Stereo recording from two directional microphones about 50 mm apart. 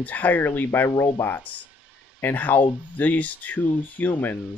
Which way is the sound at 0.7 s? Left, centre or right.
Left.